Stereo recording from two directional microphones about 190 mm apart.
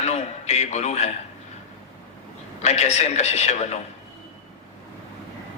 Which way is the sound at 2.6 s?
35° left (ahead or behind).